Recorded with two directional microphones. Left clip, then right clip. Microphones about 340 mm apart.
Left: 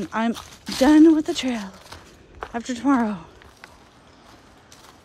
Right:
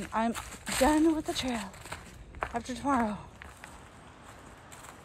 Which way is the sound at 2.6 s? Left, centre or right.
Left.